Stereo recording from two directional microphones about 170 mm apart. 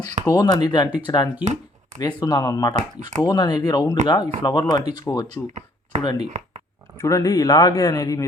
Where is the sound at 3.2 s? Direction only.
25° left (ahead or behind).